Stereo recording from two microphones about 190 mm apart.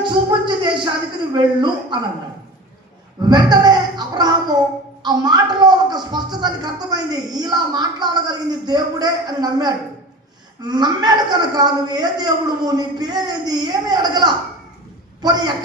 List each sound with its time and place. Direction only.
0.0 s speech: 25° right (ahead or behind)
3.2 s speech: 20° right (ahead or behind)